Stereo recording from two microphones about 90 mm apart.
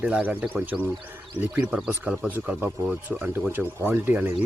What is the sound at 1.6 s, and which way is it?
Speech, 5° right (ahead or behind).